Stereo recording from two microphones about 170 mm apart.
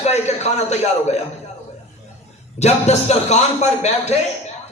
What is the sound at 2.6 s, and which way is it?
A man's voice, 40° left (ahead or behind).